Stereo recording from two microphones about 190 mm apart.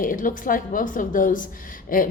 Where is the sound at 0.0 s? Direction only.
45° left (ahead or behind).